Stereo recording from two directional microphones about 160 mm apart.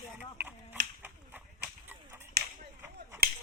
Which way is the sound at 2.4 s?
80° right.